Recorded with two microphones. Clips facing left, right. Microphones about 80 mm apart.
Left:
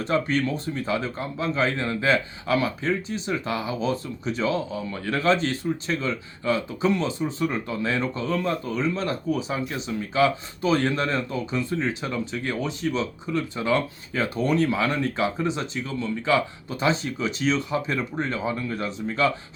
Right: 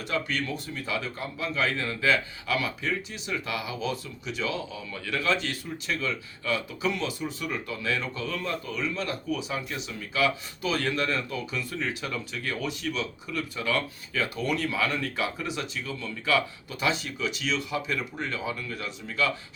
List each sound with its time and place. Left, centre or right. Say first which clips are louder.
0.0 s speech: left 7 dB; left